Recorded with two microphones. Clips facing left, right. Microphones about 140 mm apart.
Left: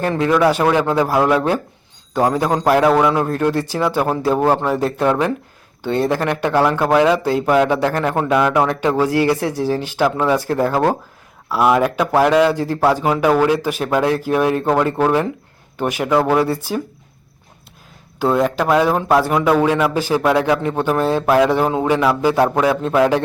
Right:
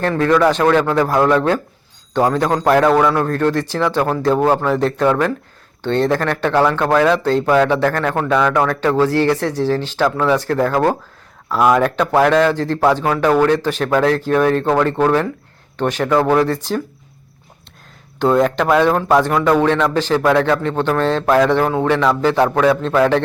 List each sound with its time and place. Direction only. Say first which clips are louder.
0.0 s speech: right 1 dB; 15° left (ahead or behind)
18.2 s speech: right 2 dB; 5° left (ahead or behind)